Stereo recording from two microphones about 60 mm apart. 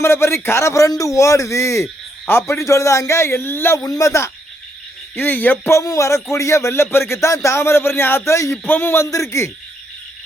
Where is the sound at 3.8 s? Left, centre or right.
Left.